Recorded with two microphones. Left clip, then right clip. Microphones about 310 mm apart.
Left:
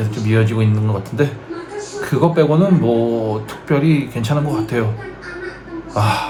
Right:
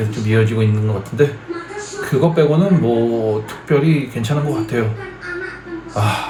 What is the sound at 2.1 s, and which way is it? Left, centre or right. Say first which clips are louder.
A man's voice: even; centre.